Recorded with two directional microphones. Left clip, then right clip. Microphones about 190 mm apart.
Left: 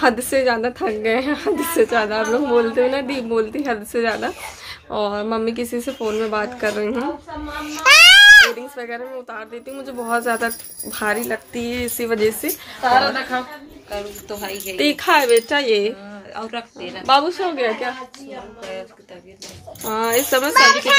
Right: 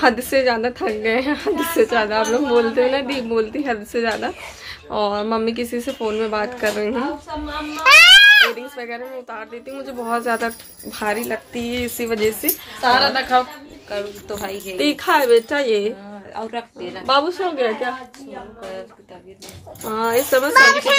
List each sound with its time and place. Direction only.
0.0 s a woman's voice: 5° left (ahead or behind)
7.7 s babbling: 45° left (ahead or behind)
8.5 s speech: 5° left (ahead or behind)
13.3 s a woman's voice: 60° right (ahead or behind)
14.8 s speech: 15° left (ahead or behind)
16.3 s a woman's voice: 15° right (ahead or behind)
17.0 s speech: 10° left (ahead or behind)
19.8 s speech: 15° left (ahead or behind)
20.5 s speech: 60° right (ahead or behind)